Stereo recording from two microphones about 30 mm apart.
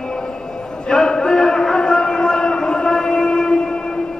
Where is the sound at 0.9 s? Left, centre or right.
Left.